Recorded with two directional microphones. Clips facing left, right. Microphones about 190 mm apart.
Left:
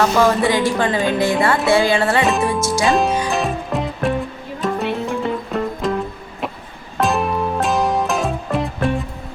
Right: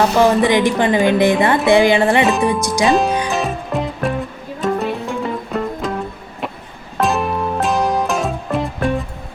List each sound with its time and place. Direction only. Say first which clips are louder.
0.2 s speech: right 3 dB; 20° right (ahead or behind)
2.2 s speech: right 2 dB; centre (ahead or behind)
2.5 s speech: right 2 dB; 15° right (ahead or behind)
2.9 s speech: right 2 dB; centre (ahead or behind)
3.2 s music: even; centre (ahead or behind)
7.0 s music: even; centre (ahead or behind)